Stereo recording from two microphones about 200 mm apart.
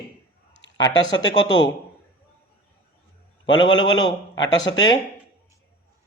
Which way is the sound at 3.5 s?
20° left (ahead or behind).